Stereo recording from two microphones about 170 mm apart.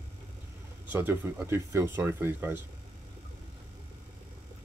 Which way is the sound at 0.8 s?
15° right (ahead or behind).